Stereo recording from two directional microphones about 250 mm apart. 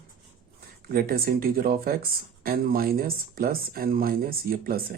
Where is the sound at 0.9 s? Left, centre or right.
Right.